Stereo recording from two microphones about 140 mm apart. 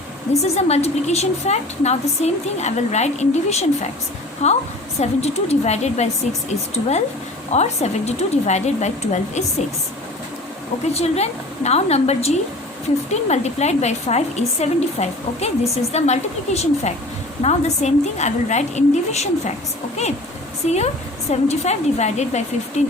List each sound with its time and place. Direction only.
0.4 s a woman's voice: 50° left (ahead or behind)
10.9 s a woman's voice: 50° left (ahead or behind)
20.7 s a woman's voice: 50° left (ahead or behind)